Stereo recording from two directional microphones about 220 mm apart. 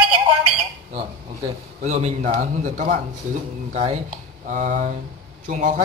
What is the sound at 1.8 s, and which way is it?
A man's voice, 30° right (ahead or behind).